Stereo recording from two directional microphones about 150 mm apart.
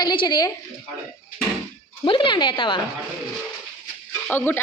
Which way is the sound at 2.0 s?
35° left (ahead or behind).